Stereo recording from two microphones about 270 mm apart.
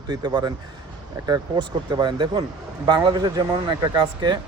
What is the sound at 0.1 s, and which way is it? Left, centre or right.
Speech, centre.